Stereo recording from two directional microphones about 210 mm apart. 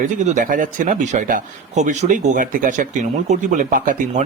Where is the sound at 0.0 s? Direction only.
35° right (ahead or behind).